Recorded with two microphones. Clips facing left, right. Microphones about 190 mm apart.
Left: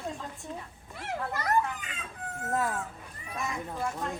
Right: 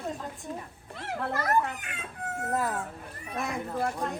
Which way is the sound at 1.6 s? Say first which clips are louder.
Right 1 dB; 65° right (ahead or behind).